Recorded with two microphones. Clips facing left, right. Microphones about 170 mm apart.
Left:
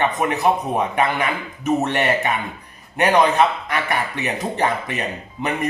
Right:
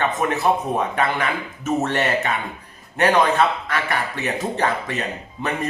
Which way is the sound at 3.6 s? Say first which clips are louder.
Left 1 dB; 15° left (ahead or behind).